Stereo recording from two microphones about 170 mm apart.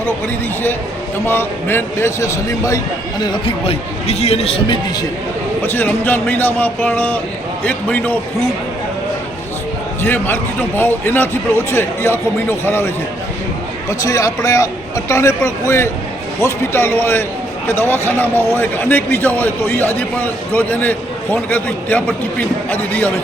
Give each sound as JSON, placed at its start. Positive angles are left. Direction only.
{"t": 1.3, "sound": "a man's voice", "side_deg": 15}
{"t": 3.3, "sound": "speech", "side_deg": 35}
{"t": 5.6, "sound": "a man's voice", "side_deg": 10}
{"t": 10.0, "sound": "a man's voice", "side_deg": 10}
{"t": 14.0, "sound": "a man's voice", "side_deg": 20}